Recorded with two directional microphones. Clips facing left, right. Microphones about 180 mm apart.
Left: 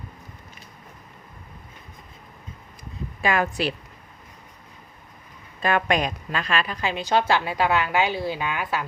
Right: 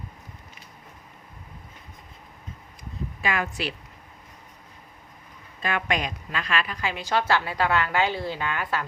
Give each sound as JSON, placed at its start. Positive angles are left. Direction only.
{"t": 3.2, "sound": "speech", "side_deg": 40}
{"t": 5.6, "sound": "a woman's voice", "side_deg": 40}